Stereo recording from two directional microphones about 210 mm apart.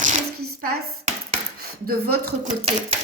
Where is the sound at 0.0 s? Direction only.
35° right (ahead or behind).